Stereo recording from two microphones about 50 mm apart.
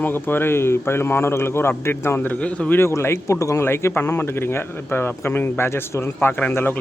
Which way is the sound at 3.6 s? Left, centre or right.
Left.